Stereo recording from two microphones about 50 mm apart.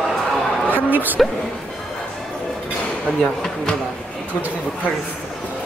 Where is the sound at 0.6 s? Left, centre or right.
Right.